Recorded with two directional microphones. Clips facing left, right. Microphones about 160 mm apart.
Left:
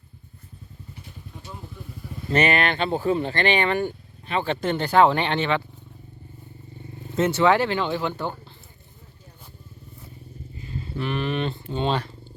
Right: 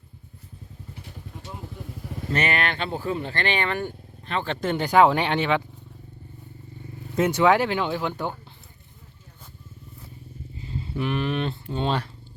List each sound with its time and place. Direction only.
2.3 s speech: 20° left (ahead or behind)
4.7 s speech: 10° right (ahead or behind)
7.2 s speech: 10° right (ahead or behind)
10.6 s livestock: 20° right (ahead or behind)
11.0 s speech: 5° right (ahead or behind)